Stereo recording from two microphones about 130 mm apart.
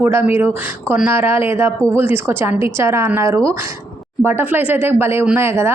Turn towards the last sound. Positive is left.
turn(degrees=-20)  # may be behind; listen again after turning